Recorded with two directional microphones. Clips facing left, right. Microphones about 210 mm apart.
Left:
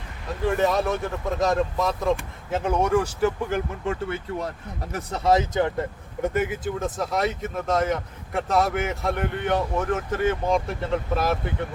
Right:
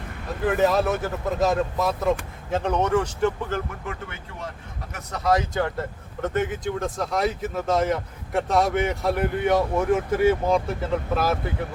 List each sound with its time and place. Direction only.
0.4 s speech: centre (ahead or behind)
3.8 s speech: 35° left (ahead or behind)
6.2 s speech: 10° left (ahead or behind)